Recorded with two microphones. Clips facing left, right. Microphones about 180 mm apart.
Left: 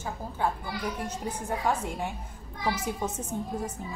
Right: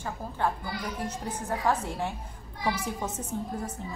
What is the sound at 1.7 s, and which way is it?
Speech, 10° left (ahead or behind).